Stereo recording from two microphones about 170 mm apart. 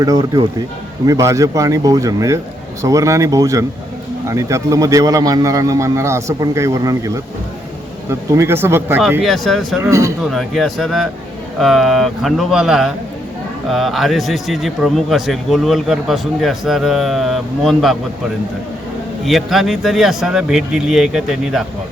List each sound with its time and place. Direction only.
0.0 s a man's voice: 20° right (ahead or behind)
9.2 s speech: centre (ahead or behind)
19.2 s speech: centre (ahead or behind)